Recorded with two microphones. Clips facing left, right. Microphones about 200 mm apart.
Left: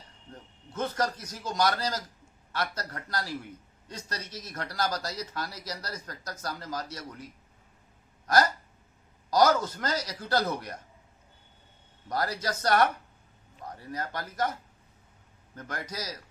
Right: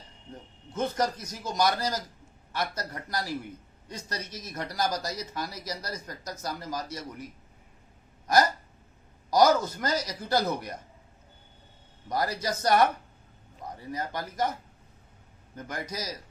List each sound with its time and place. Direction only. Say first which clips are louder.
0.3 s a man's voice: right 3 dB; 15° right (ahead or behind)
9.3 s speech: right 2 dB; 10° right (ahead or behind)
12.0 s speech: right 1 dB; 15° right (ahead or behind)
15.5 s speech: right 2 dB; 15° right (ahead or behind)